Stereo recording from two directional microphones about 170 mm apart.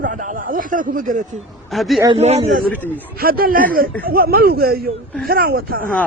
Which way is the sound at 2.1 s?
40° right (ahead or behind).